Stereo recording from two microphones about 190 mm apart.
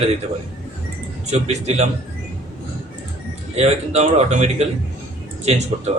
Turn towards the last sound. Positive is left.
turn(degrees=-35)  # may be behind; listen again after turning